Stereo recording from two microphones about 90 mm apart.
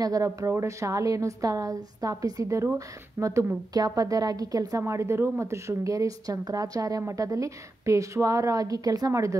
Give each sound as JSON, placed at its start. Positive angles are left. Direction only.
{"t": 0.0, "sound": "a woman's voice", "side_deg": -40}